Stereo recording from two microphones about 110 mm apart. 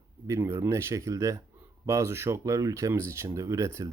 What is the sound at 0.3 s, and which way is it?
Speech, 25° right (ahead or behind).